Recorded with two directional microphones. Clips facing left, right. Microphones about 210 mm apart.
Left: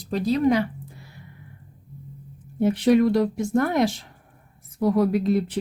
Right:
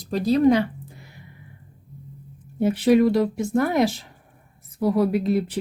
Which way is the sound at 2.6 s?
5° right (ahead or behind).